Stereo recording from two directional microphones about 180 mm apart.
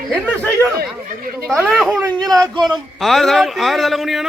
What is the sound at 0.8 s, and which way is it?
Speech, 55° right (ahead or behind).